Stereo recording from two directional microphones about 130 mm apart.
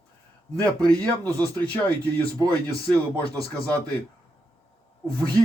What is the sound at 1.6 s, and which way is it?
Speech, 10° left (ahead or behind).